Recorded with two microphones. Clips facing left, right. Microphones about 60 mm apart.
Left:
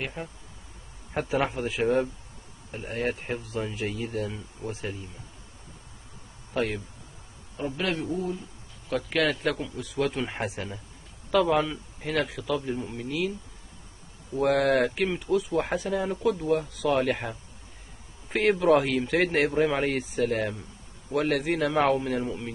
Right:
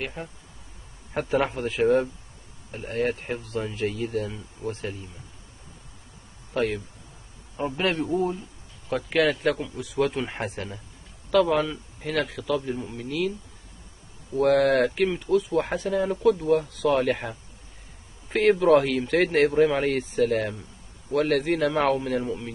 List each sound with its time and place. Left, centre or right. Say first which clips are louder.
0.0 s speech: right 1 dB; centre
6.5 s speech: right 3 dB; centre
7.5 s a man's voice: right 4 dB; right
8.8 s speech: right 3 dB; centre
14.3 s speech: right 3 dB; centre